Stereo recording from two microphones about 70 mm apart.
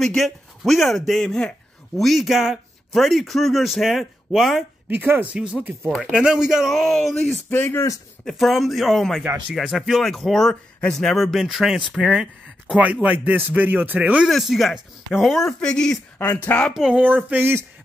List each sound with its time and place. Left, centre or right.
0.0 s speech: centre
4.8 s speech: right
5.3 s speech: centre
5.9 s speech: centre
6.1 s speech: centre
7.4 s a man's voice: left
8.3 s speech: centre
12.7 s speech: centre
14.2 s speech: centre
15.6 s speech: centre
16.4 s a man's voice: left
16.7 s speech: centre
17.0 s speech: right